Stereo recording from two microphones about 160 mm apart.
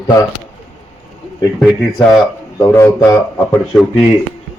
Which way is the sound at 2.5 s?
15° left (ahead or behind).